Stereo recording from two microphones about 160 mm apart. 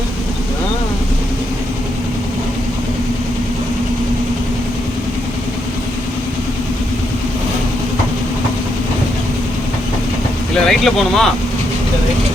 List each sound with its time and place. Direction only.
10.5 s speech: centre (ahead or behind)